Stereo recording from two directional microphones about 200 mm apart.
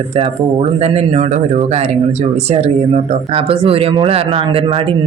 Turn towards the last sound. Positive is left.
turn(degrees=-25)  # may be behind; listen again after turning